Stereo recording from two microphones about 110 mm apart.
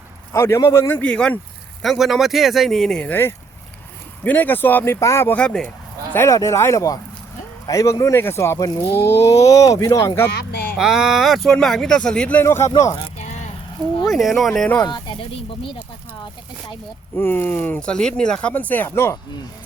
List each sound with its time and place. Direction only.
0.3 s speech: 25° left (ahead or behind)
1.8 s speech: centre (ahead or behind)
3.0 s speech: 20° left (ahead or behind)
5.3 s speech: 10° left (ahead or behind)
6.1 s speech: 30° left (ahead or behind)
10.8 s speech: 5° right (ahead or behind); by 12.5 s 10° left (ahead or behind)
12.5 s speech: 25° left (ahead or behind)
13.1 s a sound: 90° left
14.1 s speech: centre (ahead or behind)
17.2 s speech: 20° left (ahead or behind)